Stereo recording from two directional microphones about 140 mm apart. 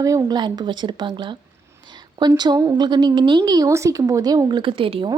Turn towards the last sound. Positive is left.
turn(degrees=-40)  # may be behind; listen again after turning